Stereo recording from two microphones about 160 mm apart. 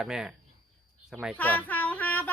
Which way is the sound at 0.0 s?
5° right (ahead or behind).